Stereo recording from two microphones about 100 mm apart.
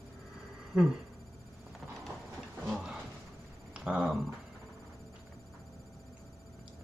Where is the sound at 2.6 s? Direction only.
Centre (ahead or behind).